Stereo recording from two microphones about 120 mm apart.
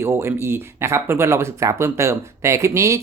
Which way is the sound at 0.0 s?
20° right (ahead or behind).